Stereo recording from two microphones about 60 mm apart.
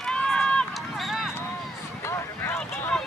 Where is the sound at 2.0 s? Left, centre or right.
Left.